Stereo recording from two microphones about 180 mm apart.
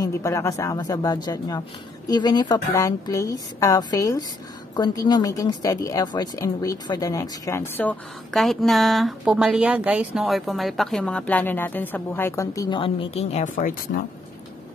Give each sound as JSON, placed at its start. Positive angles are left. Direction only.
{"t": 0.0, "sound": "a woman's voice", "side_deg": 15}